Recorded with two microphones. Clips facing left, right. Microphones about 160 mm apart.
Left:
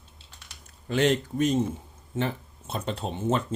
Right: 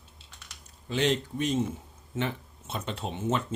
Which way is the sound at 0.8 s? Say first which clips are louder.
Left 4 dB; 50° left (ahead or behind).